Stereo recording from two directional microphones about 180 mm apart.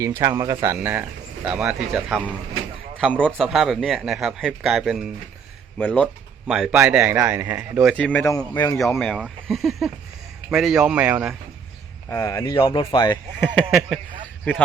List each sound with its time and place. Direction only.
0.2 s speech: 15° right (ahead or behind)
3.1 s speech: 5° left (ahead or behind)
6.5 s speech: 5° right (ahead or behind)
7.9 s speech: 10° left (ahead or behind)
9.0 s speech: centre (ahead or behind)
12.0 s speech: 15° left (ahead or behind)
13.6 s speech: centre (ahead or behind)